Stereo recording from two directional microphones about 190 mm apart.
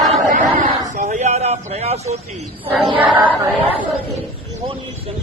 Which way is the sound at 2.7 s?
Centre (ahead or behind).